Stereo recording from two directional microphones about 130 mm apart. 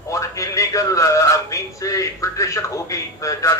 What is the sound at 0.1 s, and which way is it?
A man's voice, 25° left (ahead or behind).